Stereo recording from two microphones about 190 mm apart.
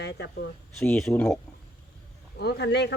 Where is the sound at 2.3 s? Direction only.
60° left (ahead or behind).